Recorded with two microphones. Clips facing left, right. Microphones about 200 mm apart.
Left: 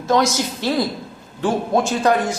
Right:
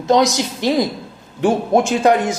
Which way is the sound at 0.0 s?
15° right (ahead or behind).